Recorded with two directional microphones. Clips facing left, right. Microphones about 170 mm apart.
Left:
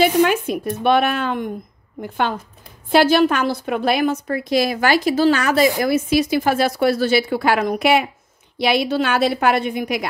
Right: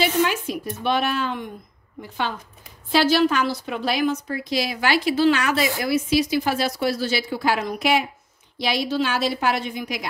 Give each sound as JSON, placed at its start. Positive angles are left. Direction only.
{"t": 0.0, "sound": "a woman's voice", "side_deg": 55}